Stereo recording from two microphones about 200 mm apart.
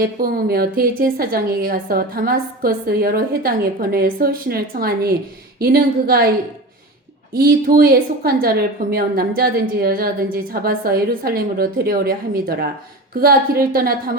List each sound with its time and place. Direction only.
0.0 s a woman's voice: 50° right (ahead or behind)
7.3 s a woman's voice: 50° right (ahead or behind)